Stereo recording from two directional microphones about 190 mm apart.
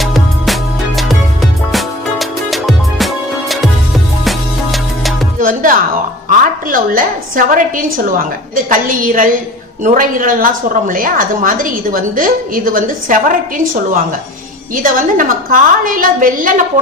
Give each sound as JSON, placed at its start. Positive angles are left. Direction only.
{"t": 0.0, "sound": "music", "side_deg": 0}
{"t": 4.2, "sound": "music", "side_deg": 0}
{"t": 5.4, "sound": "music", "side_deg": -45}
{"t": 6.2, "sound": "a woman's voice", "side_deg": -45}
{"t": 14.8, "sound": "a woman's voice", "side_deg": -45}